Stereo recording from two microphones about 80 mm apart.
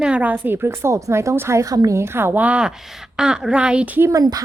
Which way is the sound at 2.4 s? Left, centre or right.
Centre.